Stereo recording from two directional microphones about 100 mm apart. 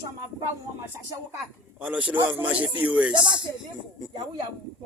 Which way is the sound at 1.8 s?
15° right (ahead or behind).